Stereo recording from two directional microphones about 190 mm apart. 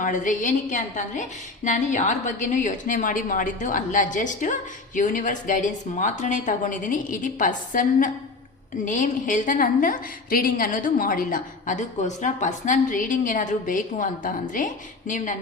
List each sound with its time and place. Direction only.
0.0 s a woman's voice: 45° left (ahead or behind)